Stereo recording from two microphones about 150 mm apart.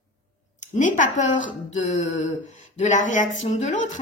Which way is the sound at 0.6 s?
55° left (ahead or behind).